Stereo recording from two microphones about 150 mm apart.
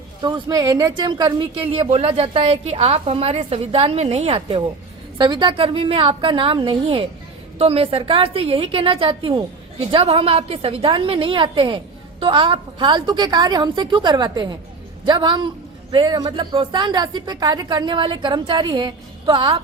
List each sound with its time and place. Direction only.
0.2 s speech: 30° right (ahead or behind)